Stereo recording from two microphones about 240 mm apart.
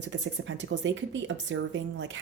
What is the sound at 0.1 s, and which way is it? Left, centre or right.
Speech, right.